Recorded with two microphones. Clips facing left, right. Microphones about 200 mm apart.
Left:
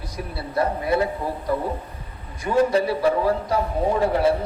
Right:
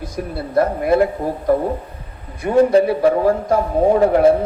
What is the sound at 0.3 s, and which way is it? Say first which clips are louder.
Speech: right 6 dB; 45° right (ahead or behind).